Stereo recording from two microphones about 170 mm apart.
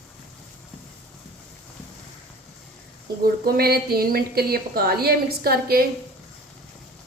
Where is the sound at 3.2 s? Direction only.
60° right (ahead or behind).